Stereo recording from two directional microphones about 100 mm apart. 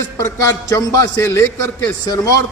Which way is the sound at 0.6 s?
35° left (ahead or behind).